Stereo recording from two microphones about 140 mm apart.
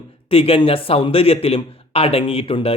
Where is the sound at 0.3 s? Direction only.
40° left (ahead or behind).